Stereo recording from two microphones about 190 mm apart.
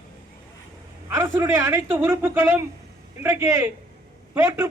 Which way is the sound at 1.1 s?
15° right (ahead or behind).